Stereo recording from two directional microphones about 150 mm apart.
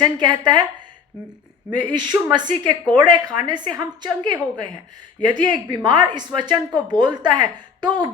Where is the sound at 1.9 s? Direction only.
30° right (ahead or behind).